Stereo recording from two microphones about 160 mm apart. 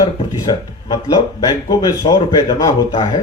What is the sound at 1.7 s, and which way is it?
Speech, 20° left (ahead or behind).